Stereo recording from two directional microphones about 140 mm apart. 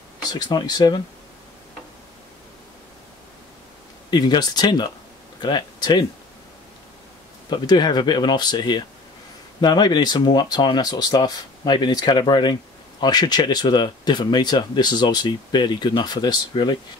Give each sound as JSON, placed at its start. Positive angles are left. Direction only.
{"t": 0.2, "sound": "speech", "side_deg": 30}
{"t": 4.1, "sound": "speech", "side_deg": 30}
{"t": 7.4, "sound": "speech", "side_deg": 30}